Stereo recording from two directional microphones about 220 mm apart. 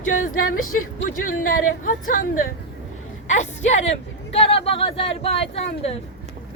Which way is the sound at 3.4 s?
30° left (ahead or behind).